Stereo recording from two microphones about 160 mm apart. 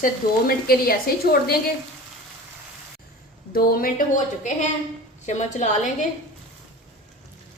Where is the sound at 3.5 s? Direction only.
70° left (ahead or behind); by 5.8 s 50° left (ahead or behind).